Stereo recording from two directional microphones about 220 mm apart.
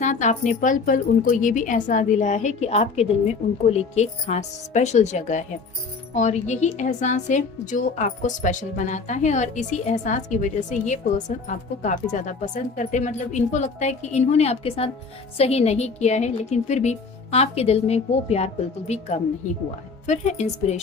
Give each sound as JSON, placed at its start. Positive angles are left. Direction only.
{"t": 0.0, "sound": "a woman's voice", "side_deg": 35}